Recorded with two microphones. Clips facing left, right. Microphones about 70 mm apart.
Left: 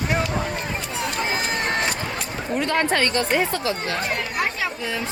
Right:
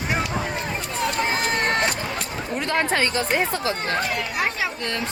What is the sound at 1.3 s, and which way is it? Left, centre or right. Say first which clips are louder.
Speech: right 2 dB; right.